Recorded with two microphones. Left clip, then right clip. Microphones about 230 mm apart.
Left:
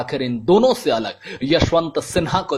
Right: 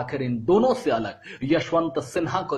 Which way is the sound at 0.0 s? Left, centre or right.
Left.